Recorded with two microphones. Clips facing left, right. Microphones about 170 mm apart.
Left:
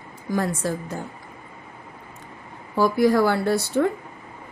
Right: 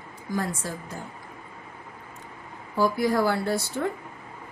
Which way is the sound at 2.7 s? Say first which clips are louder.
Left 5 dB; 75° left (ahead or behind).